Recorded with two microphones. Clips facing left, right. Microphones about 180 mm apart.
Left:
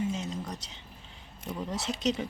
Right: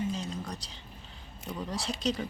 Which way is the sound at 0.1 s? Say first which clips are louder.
Left 1 dB; 20° left (ahead or behind).